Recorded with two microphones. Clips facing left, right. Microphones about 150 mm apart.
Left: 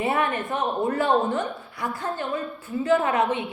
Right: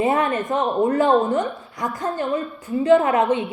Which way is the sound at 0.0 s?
20° right (ahead or behind).